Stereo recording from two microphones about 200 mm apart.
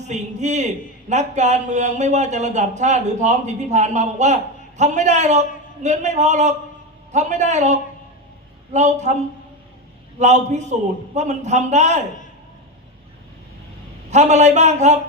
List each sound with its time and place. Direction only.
0.1 s speech: 35° right (ahead or behind)
10.2 s speech: 35° right (ahead or behind)
14.1 s speech: 35° right (ahead or behind)